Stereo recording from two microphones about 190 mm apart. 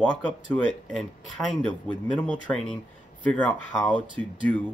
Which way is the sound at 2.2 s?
5° left (ahead or behind).